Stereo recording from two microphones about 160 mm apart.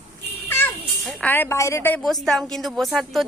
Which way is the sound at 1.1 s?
10° left (ahead or behind).